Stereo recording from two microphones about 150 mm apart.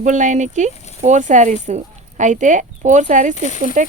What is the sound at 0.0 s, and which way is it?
Speech, 55° right (ahead or behind).